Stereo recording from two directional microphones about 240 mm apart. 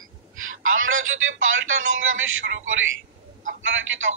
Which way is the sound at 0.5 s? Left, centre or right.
Right.